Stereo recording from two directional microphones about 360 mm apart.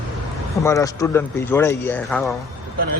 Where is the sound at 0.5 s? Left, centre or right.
Centre.